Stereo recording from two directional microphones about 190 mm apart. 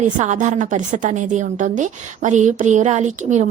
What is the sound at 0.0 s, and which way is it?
A woman's voice, 40° right (ahead or behind).